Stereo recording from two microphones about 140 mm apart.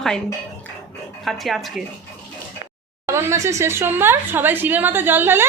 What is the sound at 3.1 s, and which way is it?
A woman's voice, 20° right (ahead or behind).